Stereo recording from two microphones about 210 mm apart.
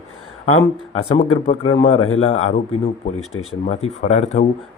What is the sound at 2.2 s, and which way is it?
Speech, 30° left (ahead or behind).